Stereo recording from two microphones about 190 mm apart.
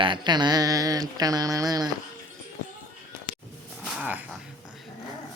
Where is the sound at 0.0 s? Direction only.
25° right (ahead or behind).